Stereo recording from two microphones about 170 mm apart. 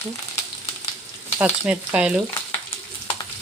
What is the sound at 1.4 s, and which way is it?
Speech, 5° right (ahead or behind).